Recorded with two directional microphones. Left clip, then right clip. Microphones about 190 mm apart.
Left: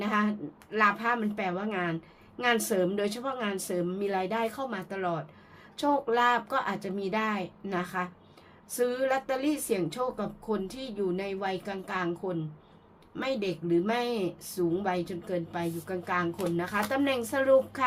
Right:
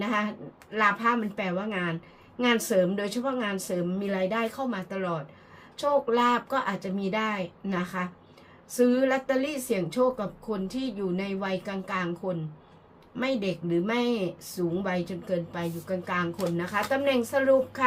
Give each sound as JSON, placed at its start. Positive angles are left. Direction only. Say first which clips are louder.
{"t": 0.0, "sound": "speech", "louder": "even", "side_deg": 40}